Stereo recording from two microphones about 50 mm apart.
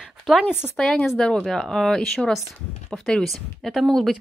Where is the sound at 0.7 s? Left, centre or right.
Centre.